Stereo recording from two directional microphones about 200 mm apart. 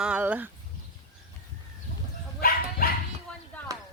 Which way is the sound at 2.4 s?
45° left (ahead or behind).